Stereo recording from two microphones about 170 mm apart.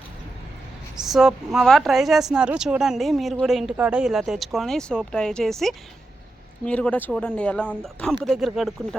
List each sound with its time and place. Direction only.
1.0 s speech: centre (ahead or behind)